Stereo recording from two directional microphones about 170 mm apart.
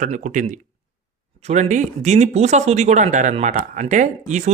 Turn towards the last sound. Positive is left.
turn(degrees=-45)  # may be behind; listen again after turning